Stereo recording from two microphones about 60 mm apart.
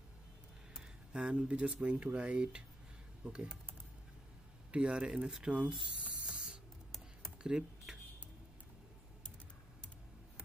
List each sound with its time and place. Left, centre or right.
1.1 s speech: centre
4.6 s speech: centre
5.5 s spray: centre
7.4 s computer keyboard: centre